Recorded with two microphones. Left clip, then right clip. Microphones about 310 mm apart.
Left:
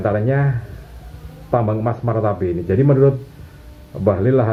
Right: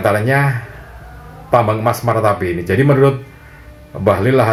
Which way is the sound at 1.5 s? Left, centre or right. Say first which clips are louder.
Right 6 dB; right.